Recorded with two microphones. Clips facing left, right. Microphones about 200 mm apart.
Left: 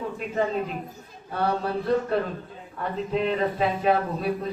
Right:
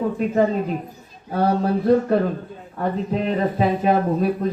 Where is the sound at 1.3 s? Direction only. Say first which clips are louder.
Right 6 dB; 40° right (ahead or behind).